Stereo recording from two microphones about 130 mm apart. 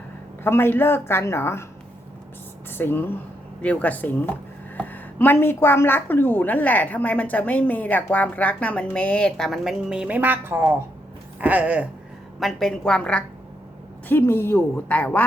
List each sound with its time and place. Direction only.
0.4 s a woman's voice: 15° left (ahead or behind)
2.6 s a woman's voice: 15° left (ahead or behind); by 11.9 s 10° right (ahead or behind)
12.4 s a woman's voice: centre (ahead or behind)
14.1 s a woman's voice: 20° left (ahead or behind)